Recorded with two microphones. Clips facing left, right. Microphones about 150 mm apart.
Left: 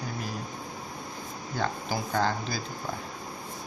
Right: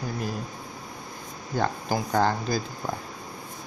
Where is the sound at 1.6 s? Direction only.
45° right (ahead or behind).